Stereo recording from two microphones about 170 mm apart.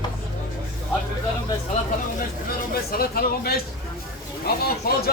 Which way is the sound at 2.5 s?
60° left (ahead or behind).